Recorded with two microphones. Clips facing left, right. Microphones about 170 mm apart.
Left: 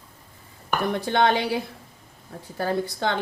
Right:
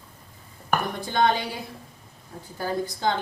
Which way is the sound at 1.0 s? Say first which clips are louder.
Left 2 dB; 65° left (ahead or behind).